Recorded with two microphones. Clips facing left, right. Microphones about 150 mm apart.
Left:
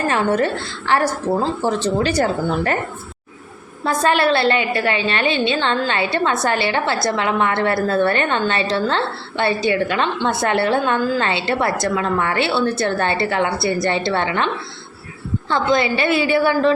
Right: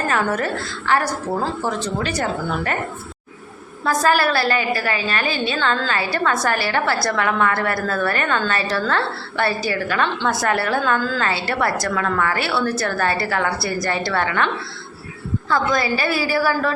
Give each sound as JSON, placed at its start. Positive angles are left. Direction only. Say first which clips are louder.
{"t": 0.1, "sound": "a woman's voice", "louder": "left 4 dB", "side_deg": 25}
{"t": 3.8, "sound": "a woman's voice", "louder": "left 1 dB", "side_deg": 25}